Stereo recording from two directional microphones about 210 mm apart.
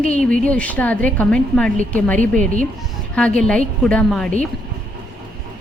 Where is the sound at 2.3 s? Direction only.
40° right (ahead or behind).